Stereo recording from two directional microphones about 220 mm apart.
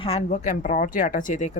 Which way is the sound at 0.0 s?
25° left (ahead or behind).